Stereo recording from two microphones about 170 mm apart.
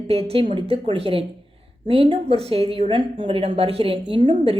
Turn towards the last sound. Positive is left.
turn(degrees=-30)  # may be behind; listen again after turning